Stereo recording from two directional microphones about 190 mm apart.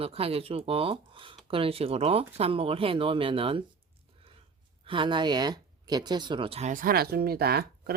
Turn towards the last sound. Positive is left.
turn(degrees=-55)  # may be behind; listen again after turning